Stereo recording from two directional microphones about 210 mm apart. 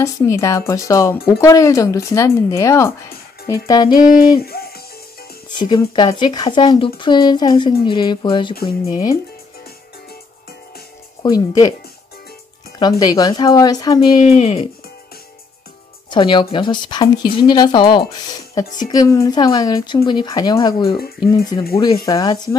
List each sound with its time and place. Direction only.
0.0 s speech: 15° left (ahead or behind)
4.5 s music: 45° left (ahead or behind)
5.5 s speech: 20° left (ahead or behind)
11.2 s speech: 20° left (ahead or behind)
12.7 s speech: 20° left (ahead or behind)
14.3 s speech: 30° left (ahead or behind)
16.1 s speech: 20° left (ahead or behind)